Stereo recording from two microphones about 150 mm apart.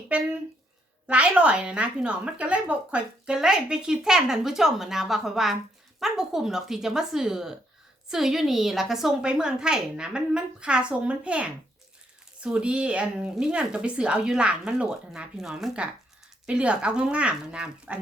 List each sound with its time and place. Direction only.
1.0 s a woman's voice: 10° right (ahead or behind)